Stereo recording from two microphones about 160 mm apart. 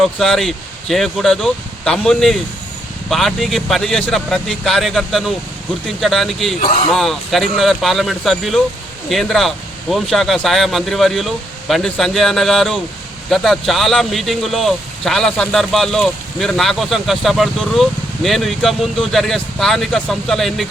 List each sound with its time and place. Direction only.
0.0 s speech: centre (ahead or behind)
6.6 s speech: 60° left (ahead or behind)
6.9 s speech: centre (ahead or behind)